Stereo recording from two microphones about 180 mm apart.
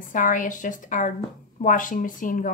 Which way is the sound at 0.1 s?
45° left (ahead or behind).